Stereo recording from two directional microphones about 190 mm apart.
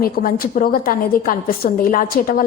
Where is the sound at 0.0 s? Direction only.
50° left (ahead or behind).